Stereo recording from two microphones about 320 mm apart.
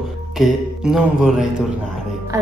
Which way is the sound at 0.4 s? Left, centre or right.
Centre.